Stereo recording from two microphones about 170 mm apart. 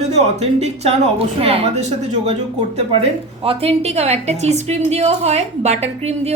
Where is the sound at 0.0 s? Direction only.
40° right (ahead or behind).